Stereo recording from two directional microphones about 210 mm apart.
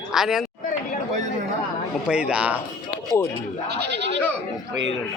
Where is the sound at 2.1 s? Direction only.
5° right (ahead or behind).